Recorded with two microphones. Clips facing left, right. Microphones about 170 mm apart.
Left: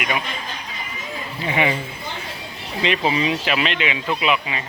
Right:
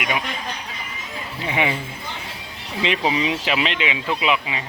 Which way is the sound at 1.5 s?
5° right (ahead or behind).